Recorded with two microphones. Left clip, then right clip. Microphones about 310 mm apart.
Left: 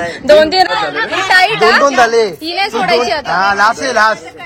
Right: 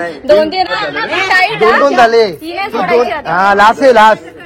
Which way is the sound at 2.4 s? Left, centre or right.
Left.